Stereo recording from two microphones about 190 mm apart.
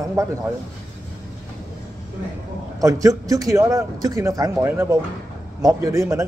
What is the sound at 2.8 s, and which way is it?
A man's voice, 15° right (ahead or behind).